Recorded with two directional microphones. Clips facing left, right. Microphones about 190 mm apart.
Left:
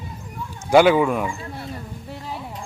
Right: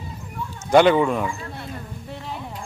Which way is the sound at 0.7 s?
5° left (ahead or behind).